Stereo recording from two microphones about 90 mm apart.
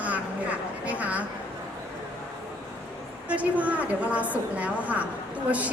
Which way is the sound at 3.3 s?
15° right (ahead or behind).